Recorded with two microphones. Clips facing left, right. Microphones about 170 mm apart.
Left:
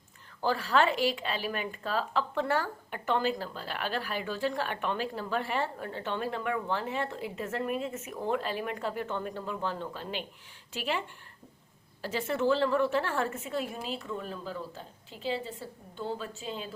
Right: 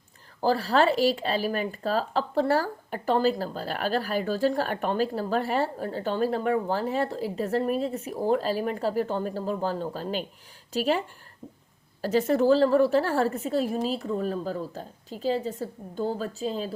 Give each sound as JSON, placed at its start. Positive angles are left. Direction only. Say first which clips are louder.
{"t": 0.4, "sound": "speech", "louder": "right 5 dB", "side_deg": -35}
{"t": 12.0, "sound": "speech", "louder": "right 7 dB", "side_deg": -40}